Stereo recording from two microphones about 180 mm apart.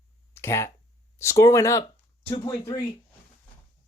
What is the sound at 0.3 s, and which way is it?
Speech, 15° left (ahead or behind).